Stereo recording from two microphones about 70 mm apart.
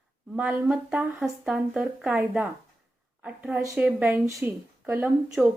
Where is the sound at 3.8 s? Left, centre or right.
Right.